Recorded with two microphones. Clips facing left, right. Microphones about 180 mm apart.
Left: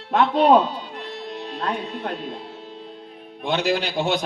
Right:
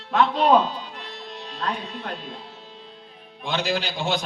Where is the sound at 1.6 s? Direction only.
55° left (ahead or behind).